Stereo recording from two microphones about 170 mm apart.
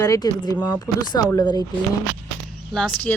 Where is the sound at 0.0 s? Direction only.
20° left (ahead or behind).